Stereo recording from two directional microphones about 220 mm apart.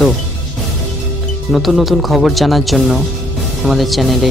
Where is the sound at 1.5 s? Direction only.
Centre (ahead or behind).